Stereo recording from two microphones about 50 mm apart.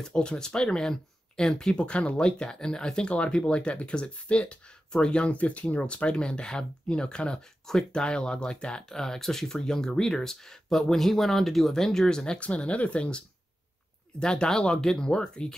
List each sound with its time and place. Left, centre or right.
0.0 s speech: centre
12.4 s speech: left
14.2 s speech: centre